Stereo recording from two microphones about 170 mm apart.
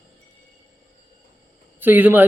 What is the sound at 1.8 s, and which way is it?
Speech, 10° right (ahead or behind).